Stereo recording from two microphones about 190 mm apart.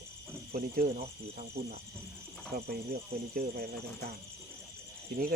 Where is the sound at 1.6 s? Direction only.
55° right (ahead or behind).